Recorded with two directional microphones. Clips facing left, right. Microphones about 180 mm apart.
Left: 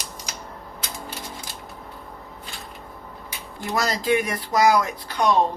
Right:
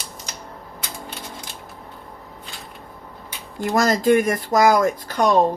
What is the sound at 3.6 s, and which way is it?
Speech, 45° right (ahead or behind).